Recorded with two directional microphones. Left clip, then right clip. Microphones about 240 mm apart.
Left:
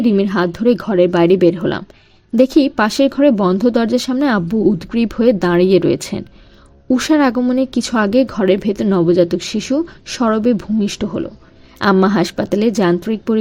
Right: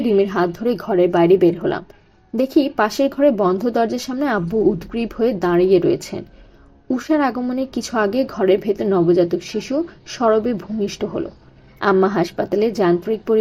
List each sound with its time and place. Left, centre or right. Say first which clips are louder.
0.2 s speech: left 1 dB; left